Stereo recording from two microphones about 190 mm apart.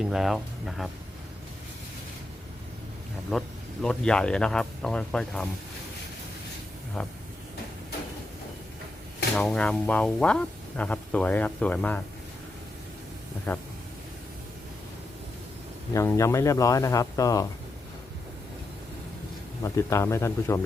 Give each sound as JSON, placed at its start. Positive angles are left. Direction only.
{"t": 0.0, "sound": "speech", "side_deg": 0}
{"t": 3.3, "sound": "speech", "side_deg": 0}
{"t": 9.3, "sound": "speech", "side_deg": 0}
{"t": 15.9, "sound": "speech", "side_deg": 15}
{"t": 19.6, "sound": "speech", "side_deg": 15}